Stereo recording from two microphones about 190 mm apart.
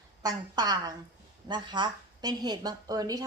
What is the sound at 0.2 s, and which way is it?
A woman's voice, 20° right (ahead or behind).